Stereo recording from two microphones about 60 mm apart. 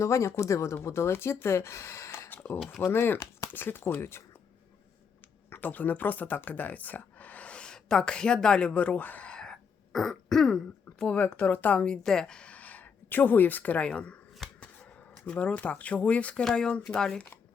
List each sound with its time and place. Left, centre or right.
0.0 s speech: left
2.3 s a sound: left
2.9 s speech: left
5.5 s speech: left
9.3 s throat clearing: centre
11.0 s speech: centre
12.0 s speech: centre
15.3 s speech: left
16.4 s speech: centre